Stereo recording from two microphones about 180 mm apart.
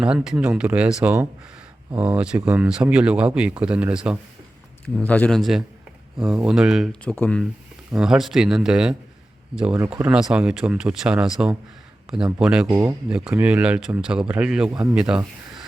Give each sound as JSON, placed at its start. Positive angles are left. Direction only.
{"t": 0.0, "sound": "speech", "side_deg": -5}
{"t": 4.9, "sound": "speech", "side_deg": 10}
{"t": 12.6, "sound": "speech", "side_deg": -20}
{"t": 13.1, "sound": "speech", "side_deg": -5}